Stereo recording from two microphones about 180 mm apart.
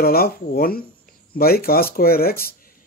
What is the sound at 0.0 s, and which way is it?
Speech, 55° left (ahead or behind).